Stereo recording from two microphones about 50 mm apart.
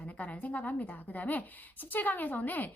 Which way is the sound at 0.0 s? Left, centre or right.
Left.